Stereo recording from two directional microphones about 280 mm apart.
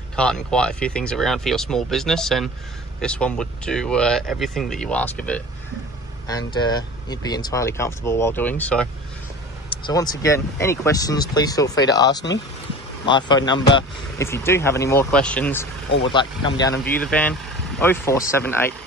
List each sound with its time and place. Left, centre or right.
0.1 s speech: centre
16.0 s speech: centre
16.7 s speech: left
17.0 s speech: centre